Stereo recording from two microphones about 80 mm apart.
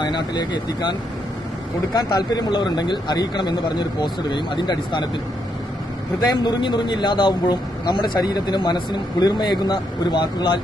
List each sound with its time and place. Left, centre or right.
0.0 s speech: left
6.1 s speech: left